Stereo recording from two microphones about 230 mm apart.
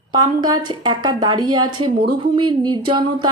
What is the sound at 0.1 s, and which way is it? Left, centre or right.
Speech, centre.